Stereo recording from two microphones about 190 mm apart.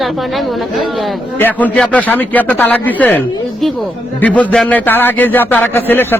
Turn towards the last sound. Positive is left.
turn(degrees=10)  # may be behind; listen again after turning